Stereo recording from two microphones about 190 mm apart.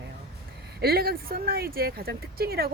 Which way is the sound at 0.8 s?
55° right (ahead or behind).